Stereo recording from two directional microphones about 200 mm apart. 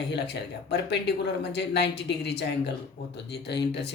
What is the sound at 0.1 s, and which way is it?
Speech, 55° left (ahead or behind).